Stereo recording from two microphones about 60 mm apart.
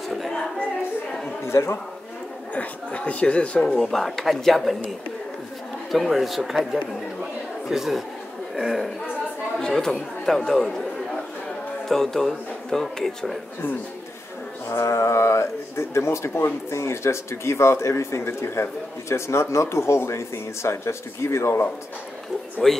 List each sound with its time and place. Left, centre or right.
1.4 s a man's voice: left
2.5 s speech: left
3.6 s a man's voice: centre
5.9 s a man's voice: centre
9.6 s a man's voice: centre
11.9 s a man's voice: centre
14.7 s speech: left
22.6 s a man's voice: centre